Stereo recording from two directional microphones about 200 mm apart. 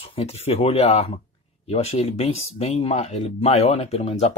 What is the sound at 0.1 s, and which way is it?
Speech, 30° left (ahead or behind).